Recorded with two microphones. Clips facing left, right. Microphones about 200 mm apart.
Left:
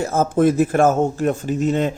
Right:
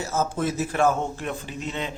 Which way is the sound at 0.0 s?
55° left (ahead or behind).